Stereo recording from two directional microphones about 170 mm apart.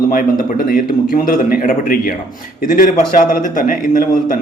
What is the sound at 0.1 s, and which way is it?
A man's voice, 55° left (ahead or behind).